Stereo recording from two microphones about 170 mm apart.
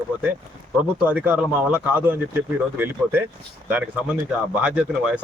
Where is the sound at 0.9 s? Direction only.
10° right (ahead or behind).